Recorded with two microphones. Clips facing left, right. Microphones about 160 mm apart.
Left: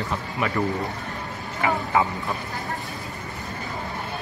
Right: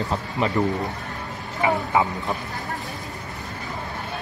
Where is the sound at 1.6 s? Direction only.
15° right (ahead or behind).